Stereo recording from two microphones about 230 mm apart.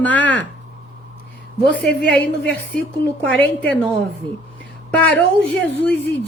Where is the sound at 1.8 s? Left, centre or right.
Left.